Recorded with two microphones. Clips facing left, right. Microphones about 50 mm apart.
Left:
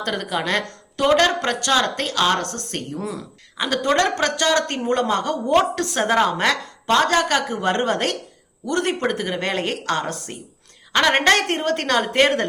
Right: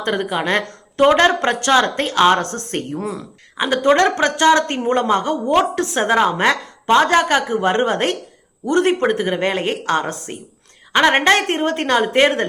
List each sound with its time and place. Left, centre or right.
0.0 s speech: right
3.6 s a woman's voice: right